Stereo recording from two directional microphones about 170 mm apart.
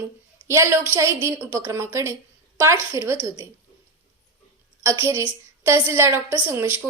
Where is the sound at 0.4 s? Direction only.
15° right (ahead or behind).